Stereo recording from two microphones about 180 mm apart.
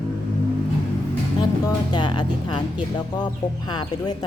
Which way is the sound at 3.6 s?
20° left (ahead or behind).